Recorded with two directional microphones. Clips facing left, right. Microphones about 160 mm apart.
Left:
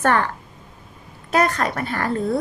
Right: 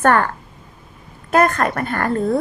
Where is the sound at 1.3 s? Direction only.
55° right (ahead or behind).